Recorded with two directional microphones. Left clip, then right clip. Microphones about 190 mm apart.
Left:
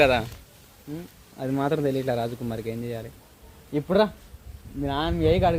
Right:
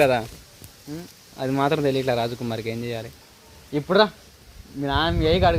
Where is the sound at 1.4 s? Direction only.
15° right (ahead or behind).